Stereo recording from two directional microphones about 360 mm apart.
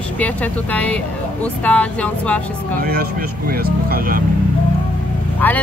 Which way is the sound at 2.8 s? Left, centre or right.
Right.